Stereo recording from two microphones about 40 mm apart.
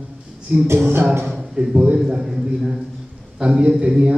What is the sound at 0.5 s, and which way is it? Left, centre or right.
Music, right.